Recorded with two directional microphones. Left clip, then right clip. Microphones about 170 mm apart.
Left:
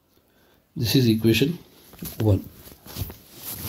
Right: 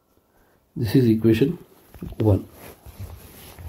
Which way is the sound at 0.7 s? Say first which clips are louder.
Right 2 dB; 20° right (ahead or behind).